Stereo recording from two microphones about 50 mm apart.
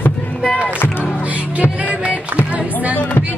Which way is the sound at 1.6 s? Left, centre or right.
Right.